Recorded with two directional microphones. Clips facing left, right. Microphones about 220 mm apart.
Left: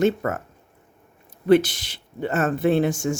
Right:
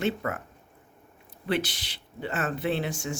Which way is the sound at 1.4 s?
45° left (ahead or behind).